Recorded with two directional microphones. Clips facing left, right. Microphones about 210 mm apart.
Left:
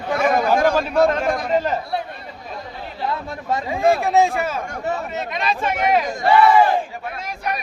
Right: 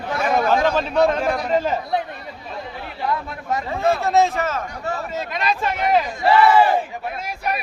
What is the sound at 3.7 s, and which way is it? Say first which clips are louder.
Speech: left 2 dB; 10° left (ahead or behind).